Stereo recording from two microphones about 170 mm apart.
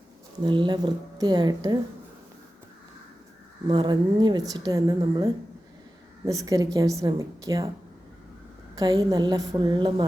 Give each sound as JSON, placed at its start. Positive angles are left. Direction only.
{"t": 0.4, "sound": "a woman's voice", "side_deg": -25}
{"t": 3.7, "sound": "a woman's voice", "side_deg": -25}
{"t": 8.7, "sound": "a woman's voice", "side_deg": -20}